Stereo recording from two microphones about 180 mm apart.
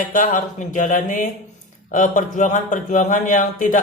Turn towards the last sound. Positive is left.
turn(degrees=45)  # may be behind; listen again after turning